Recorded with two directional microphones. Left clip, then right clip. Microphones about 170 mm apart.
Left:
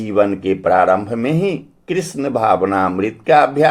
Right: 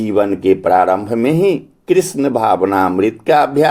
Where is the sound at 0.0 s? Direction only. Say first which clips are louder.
Right 2 dB; 35° right (ahead or behind).